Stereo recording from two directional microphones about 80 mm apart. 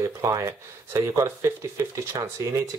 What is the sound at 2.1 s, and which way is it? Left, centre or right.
Speech, right.